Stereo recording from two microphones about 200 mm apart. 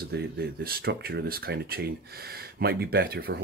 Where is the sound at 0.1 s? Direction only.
50° right (ahead or behind).